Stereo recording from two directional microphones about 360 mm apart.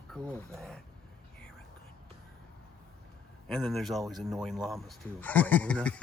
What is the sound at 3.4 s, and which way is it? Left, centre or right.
Speech, centre.